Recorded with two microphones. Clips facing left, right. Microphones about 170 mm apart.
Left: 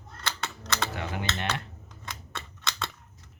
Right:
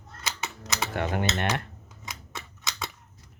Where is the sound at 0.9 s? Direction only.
55° right (ahead or behind).